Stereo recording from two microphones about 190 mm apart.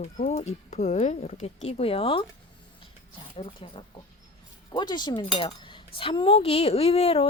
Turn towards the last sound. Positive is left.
turn(degrees=30)  # may be behind; listen again after turning